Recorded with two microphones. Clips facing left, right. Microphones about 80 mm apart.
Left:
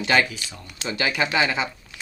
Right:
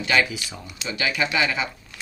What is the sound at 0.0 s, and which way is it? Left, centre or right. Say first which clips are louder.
Speech: left 1 dB; left.